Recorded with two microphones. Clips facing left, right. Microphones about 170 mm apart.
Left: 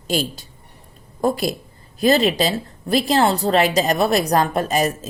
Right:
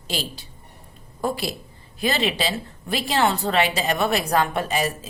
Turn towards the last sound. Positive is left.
turn(degrees=40)  # may be behind; listen again after turning